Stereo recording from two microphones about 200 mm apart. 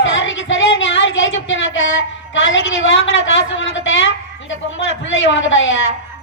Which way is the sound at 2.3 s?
70° left (ahead or behind).